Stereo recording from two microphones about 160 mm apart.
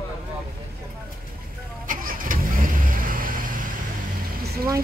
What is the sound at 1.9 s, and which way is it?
Vehicle, 60° right (ahead or behind).